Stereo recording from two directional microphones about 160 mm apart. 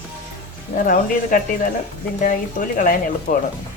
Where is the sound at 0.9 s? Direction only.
60° left (ahead or behind).